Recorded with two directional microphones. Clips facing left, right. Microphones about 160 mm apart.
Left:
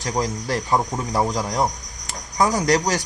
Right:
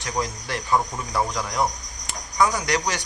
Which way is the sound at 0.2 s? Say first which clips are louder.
Left 4 dB; 35° left (ahead or behind).